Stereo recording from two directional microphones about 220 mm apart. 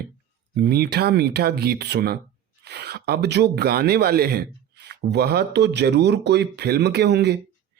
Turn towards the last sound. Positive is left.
turn(degrees=-50)  # may be behind; listen again after turning